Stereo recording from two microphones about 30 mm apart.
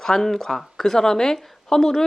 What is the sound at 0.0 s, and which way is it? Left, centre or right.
Speech, centre.